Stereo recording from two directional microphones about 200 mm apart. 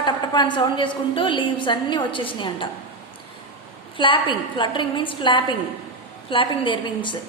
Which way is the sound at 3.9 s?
25° left (ahead or behind).